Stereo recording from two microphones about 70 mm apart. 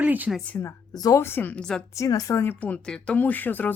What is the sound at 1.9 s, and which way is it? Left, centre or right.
Speech, left.